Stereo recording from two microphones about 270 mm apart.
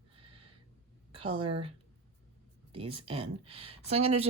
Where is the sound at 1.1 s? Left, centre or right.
Centre.